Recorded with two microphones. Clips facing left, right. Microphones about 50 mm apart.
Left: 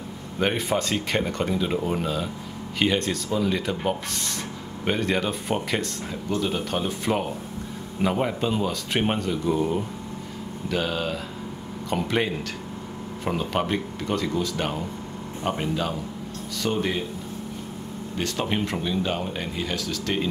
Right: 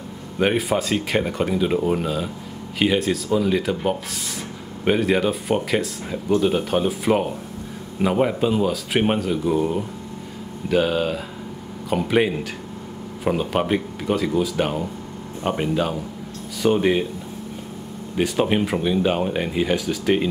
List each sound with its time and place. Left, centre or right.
0.4 s speech: centre
18.1 s speech: centre